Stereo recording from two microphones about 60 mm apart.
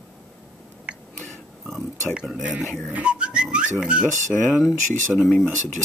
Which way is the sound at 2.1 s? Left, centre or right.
Centre.